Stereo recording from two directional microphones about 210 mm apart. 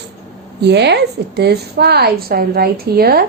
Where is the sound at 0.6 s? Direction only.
55° right (ahead or behind).